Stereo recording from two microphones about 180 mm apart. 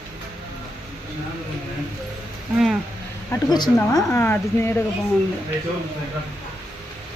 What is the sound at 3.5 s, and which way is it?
Speech, 25° left (ahead or behind).